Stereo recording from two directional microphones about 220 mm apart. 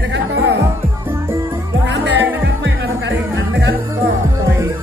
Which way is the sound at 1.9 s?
55° right (ahead or behind).